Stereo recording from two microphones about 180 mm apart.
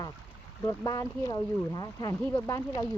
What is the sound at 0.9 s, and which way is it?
Speech, 20° left (ahead or behind).